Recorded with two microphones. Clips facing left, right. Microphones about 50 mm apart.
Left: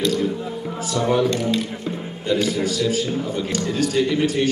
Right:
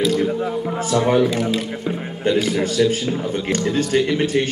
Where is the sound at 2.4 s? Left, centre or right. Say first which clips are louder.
Right 3 dB; right.